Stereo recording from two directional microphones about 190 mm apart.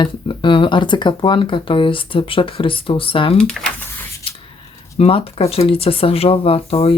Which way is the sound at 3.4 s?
5° left (ahead or behind).